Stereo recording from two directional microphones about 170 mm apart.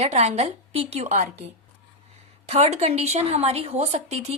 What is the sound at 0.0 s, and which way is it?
A woman's voice, 40° right (ahead or behind).